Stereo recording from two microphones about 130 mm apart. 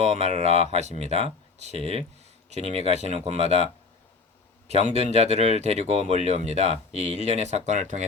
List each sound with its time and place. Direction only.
0.0 s speech: 60° right (ahead or behind)
4.7 s speech: 55° right (ahead or behind)